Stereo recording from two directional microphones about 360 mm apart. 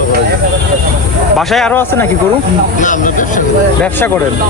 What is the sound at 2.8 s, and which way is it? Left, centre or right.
Speech, left.